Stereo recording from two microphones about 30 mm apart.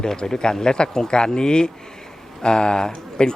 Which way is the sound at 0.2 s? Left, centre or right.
Left.